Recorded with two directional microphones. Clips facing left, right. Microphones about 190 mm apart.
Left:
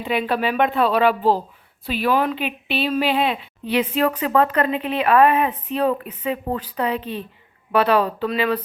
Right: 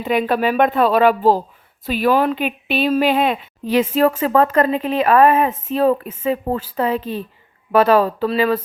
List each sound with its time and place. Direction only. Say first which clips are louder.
0.0 s speech: right 4 dB; 45° right (ahead or behind)